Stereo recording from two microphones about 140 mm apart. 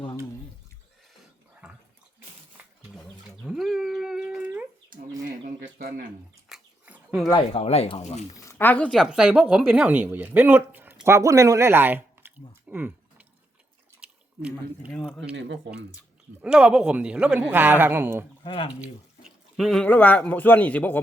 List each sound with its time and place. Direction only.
3.4 s dog: centre (ahead or behind)
6.5 s dog: 10° right (ahead or behind)
7.5 s speech: 45° left (ahead or behind)
8.4 s speech: 20° left (ahead or behind)
9.0 s speech: 5° right (ahead or behind)
14.4 s a woman's voice: 5° right (ahead or behind)
16.0 s a woman's voice: 5° right (ahead or behind)
18.4 s speech: 40° left (ahead or behind)
18.8 s speech: 5° right (ahead or behind)